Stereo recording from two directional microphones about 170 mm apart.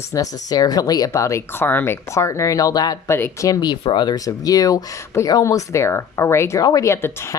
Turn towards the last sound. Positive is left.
turn(degrees=15)  # may be behind; listen again after turning